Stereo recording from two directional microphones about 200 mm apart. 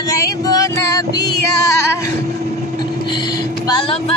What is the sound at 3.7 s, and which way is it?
Speech, 25° left (ahead or behind).